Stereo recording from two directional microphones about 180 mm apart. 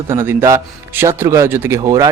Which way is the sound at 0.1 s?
15° right (ahead or behind).